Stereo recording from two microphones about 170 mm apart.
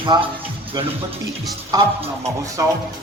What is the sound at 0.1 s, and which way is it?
Speech, 25° right (ahead or behind).